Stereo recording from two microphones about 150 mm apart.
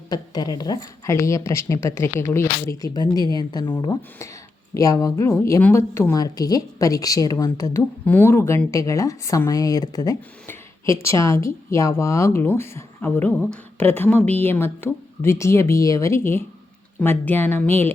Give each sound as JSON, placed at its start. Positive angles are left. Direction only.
{"t": 0.1, "sound": "a woman's voice", "side_deg": 25}
{"t": 10.4, "sound": "speech", "side_deg": 15}